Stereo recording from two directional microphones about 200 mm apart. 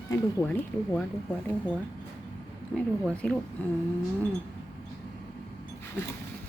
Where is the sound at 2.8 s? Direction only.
5° left (ahead or behind).